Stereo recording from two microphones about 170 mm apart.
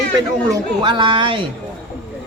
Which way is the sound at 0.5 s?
25° right (ahead or behind).